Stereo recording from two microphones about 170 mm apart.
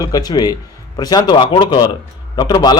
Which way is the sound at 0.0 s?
20° left (ahead or behind).